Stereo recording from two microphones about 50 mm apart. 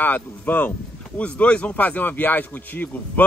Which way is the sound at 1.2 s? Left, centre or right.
Left.